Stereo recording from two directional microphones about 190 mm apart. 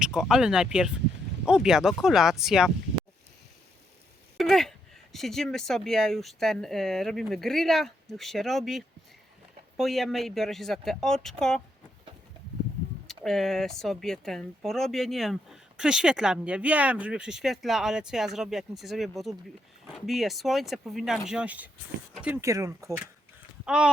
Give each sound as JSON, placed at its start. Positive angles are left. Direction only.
{"t": 0.0, "sound": "speech", "side_deg": -5}
{"t": 4.4, "sound": "speech", "side_deg": 0}
{"t": 13.1, "sound": "speech", "side_deg": 0}
{"t": 23.6, "sound": "speech", "side_deg": -5}